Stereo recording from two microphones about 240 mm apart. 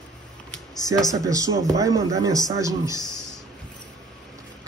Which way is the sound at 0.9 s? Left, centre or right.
Centre.